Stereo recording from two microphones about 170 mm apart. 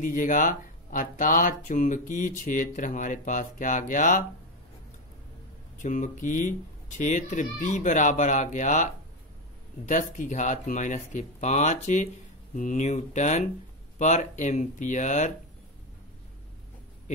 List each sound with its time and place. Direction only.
0.0 s speech: 50° left (ahead or behind)
5.8 s speech: 50° left (ahead or behind)